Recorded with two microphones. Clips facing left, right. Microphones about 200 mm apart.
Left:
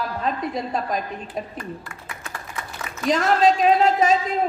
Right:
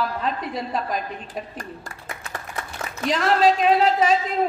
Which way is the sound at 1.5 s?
40° right (ahead or behind).